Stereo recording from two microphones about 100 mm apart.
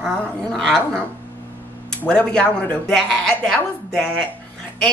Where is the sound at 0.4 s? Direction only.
5° left (ahead or behind).